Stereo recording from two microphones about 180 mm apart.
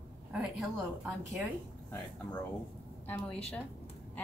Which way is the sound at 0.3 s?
5° right (ahead or behind).